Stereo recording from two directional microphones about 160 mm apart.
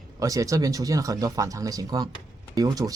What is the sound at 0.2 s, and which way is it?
Speech, 20° right (ahead or behind).